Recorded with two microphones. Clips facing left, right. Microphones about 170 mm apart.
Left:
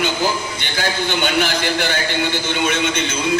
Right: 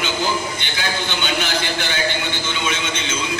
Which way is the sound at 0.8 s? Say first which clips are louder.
Left 5 dB; 50° left (ahead or behind).